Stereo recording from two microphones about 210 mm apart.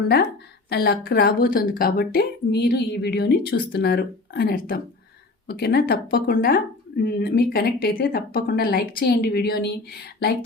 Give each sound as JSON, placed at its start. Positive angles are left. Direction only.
{"t": 0.7, "sound": "speech", "side_deg": 50}